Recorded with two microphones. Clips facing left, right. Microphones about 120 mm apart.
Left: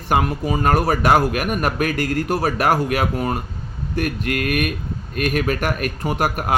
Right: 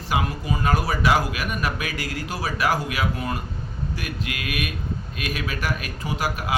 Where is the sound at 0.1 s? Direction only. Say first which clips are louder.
Left 6 dB; 55° left (ahead or behind).